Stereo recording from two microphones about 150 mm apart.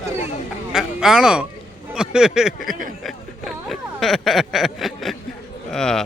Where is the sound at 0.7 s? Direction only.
5° right (ahead or behind).